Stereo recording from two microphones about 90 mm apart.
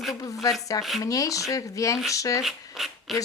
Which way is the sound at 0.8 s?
Centre (ahead or behind).